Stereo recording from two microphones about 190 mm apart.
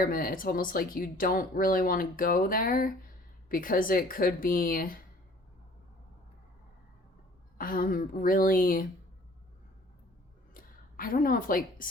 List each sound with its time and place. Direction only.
0.0 s speech: 45° left (ahead or behind)
7.6 s speech: 50° left (ahead or behind)
10.5 s a sound: 50° left (ahead or behind)